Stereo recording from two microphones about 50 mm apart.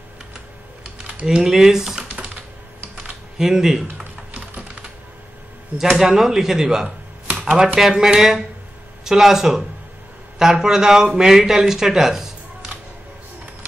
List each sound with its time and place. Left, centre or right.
1.2 s speech: centre
3.0 s a sound: centre
4.3 s typing: right
5.8 s speech: centre